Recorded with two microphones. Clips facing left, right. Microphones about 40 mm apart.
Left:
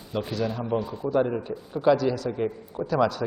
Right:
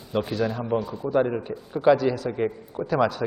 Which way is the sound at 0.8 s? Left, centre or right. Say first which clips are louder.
Right 1 dB; centre.